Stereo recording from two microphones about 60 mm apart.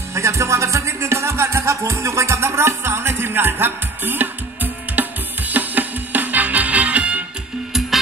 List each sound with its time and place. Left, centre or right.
0.1 s music: right